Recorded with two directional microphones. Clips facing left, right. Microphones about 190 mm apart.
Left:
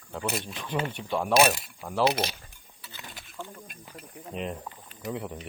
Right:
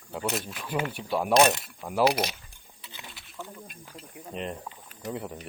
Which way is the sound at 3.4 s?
5° right (ahead or behind).